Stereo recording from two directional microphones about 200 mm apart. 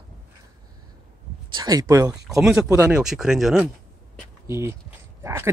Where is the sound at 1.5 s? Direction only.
20° right (ahead or behind).